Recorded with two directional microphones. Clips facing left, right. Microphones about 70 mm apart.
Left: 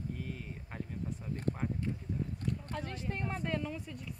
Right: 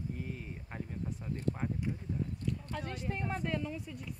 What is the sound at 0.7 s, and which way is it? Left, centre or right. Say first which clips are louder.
A woman's voice: even; centre.